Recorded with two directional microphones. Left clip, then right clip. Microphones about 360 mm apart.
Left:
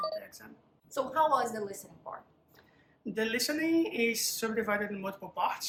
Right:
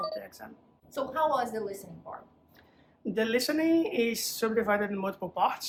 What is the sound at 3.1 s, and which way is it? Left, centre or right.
Speech, centre.